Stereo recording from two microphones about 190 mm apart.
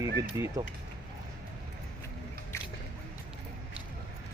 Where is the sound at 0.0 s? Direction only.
15° right (ahead or behind).